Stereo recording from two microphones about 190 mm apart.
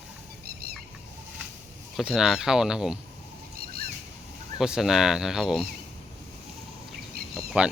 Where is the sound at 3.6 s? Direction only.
50° right (ahead or behind).